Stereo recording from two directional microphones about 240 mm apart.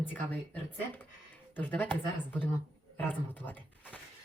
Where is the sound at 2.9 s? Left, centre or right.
Centre.